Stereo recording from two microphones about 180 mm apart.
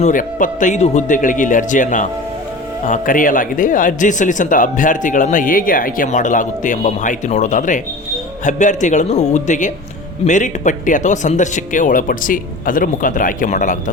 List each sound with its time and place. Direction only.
0.0 s a man's voice: 45° left (ahead or behind)